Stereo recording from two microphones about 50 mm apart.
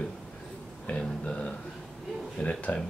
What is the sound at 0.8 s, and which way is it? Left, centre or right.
Speech, left.